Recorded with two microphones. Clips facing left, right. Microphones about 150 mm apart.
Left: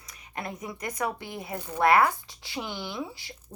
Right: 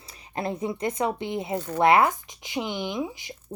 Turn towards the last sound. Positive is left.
turn(degrees=-20)  # may be behind; listen again after turning